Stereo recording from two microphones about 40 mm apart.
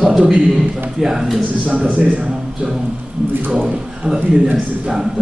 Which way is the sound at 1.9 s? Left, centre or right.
Right.